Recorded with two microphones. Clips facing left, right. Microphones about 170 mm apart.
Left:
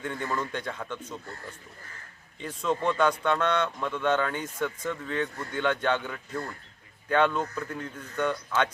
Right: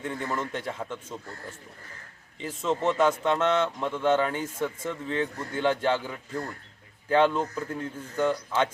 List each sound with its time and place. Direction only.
0.0 s a man's voice: 30° right (ahead or behind)